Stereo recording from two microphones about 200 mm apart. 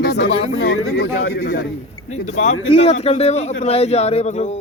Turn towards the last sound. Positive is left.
turn(degrees=35)  # may be behind; listen again after turning